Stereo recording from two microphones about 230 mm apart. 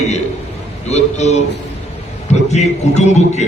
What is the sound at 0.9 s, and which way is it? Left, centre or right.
A man's voice, left.